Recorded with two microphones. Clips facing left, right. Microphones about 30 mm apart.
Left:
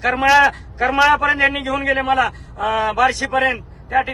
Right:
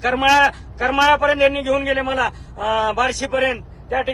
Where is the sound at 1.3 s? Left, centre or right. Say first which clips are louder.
Right 1 dB; left.